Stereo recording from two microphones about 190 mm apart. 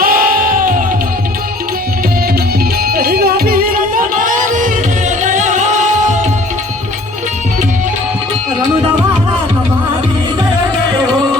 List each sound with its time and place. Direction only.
0.0 s music: 50° right (ahead or behind)
2.8 s music: 55° right (ahead or behind)